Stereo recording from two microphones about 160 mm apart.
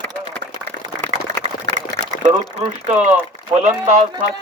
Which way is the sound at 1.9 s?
45° right (ahead or behind).